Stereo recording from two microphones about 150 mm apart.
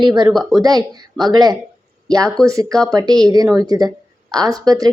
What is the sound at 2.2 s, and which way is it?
Speech, 5° left (ahead or behind).